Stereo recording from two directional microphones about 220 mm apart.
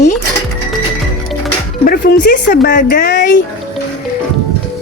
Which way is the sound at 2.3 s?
45° left (ahead or behind).